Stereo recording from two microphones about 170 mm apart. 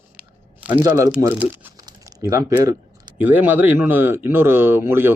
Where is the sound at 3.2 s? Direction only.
10° right (ahead or behind).